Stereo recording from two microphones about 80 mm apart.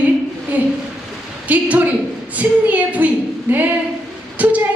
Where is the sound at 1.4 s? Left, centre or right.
Centre.